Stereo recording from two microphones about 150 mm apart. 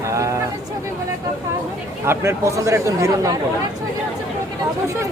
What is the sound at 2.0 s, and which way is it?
Speech, 15° right (ahead or behind).